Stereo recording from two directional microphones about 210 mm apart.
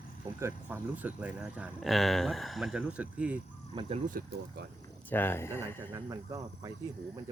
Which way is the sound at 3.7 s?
20° right (ahead or behind).